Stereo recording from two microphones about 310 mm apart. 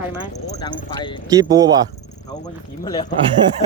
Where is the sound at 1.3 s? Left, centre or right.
Centre.